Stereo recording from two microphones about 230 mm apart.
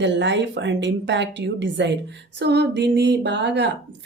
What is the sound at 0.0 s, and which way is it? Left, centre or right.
Speech, right.